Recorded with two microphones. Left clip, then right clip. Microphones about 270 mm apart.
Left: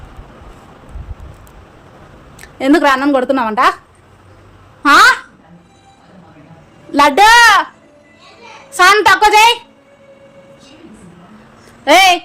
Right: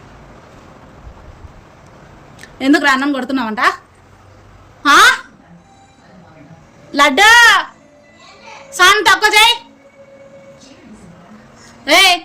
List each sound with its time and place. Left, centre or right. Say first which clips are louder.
2.4 s a woman's voice: left 2 dB; left
4.8 s a sound: left 1 dB; centre
7.0 s a woman's voice: left 1 dB; centre
8.7 s a woman's voice: left 1 dB; centre
11.9 s a woman's voice: left 2 dB; centre